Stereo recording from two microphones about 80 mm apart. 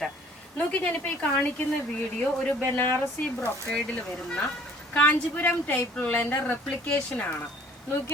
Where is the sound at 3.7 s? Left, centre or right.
Centre.